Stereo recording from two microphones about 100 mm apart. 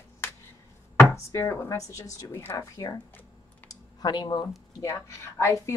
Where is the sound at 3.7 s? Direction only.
45° left (ahead or behind).